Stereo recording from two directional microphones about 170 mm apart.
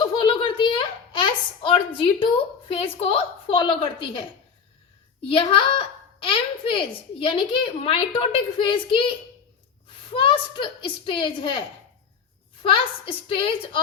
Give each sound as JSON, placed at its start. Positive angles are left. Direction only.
{"t": 0.0, "sound": "a sound", "side_deg": 30}
{"t": 5.2, "sound": "speech", "side_deg": 30}
{"t": 12.7, "sound": "speech", "side_deg": 30}